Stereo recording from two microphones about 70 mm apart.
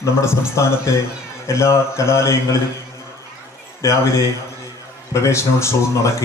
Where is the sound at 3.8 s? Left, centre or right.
Left.